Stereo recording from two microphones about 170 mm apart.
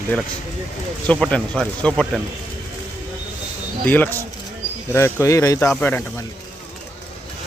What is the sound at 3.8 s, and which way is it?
Speech, 10° left (ahead or behind).